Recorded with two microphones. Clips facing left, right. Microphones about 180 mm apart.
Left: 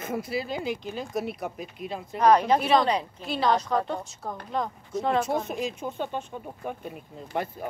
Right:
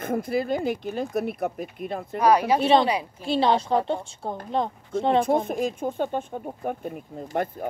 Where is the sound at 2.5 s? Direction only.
30° right (ahead or behind).